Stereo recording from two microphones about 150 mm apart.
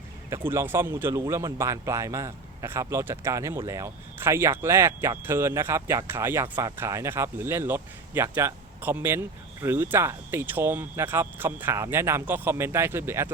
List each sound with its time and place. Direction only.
0.4 s speech: 15° right (ahead or behind)